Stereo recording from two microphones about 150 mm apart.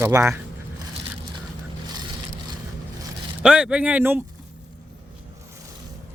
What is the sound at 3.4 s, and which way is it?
Speech, 5° right (ahead or behind).